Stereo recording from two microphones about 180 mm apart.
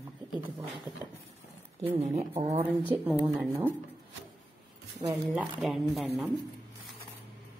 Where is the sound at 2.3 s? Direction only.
35° right (ahead or behind).